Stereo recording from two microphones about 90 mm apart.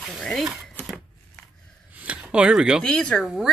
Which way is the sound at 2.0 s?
15° right (ahead or behind).